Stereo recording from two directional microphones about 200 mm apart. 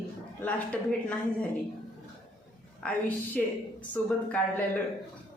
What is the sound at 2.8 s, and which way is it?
A woman's voice, 5° left (ahead or behind).